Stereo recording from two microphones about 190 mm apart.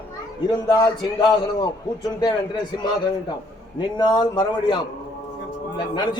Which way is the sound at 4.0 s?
20° left (ahead or behind).